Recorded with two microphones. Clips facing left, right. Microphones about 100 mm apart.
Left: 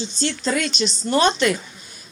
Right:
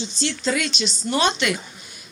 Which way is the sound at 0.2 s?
40° left (ahead or behind).